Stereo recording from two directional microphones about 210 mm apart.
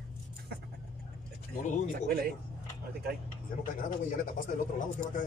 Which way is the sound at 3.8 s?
40° left (ahead or behind).